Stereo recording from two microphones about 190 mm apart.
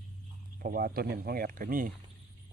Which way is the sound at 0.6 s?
50° right (ahead or behind).